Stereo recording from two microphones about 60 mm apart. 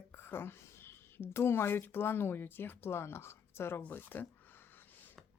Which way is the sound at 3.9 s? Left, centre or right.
Left.